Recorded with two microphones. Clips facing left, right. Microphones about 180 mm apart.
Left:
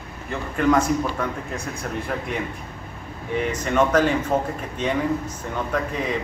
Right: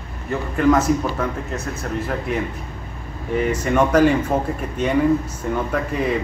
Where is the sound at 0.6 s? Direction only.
5° right (ahead or behind).